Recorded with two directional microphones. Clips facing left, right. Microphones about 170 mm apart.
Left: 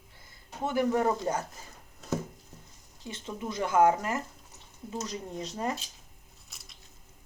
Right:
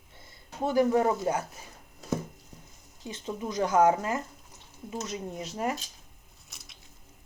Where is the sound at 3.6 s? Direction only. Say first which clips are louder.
Right 1 dB; 25° right (ahead or behind).